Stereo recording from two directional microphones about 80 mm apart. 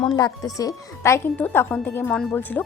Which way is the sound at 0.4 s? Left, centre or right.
Left.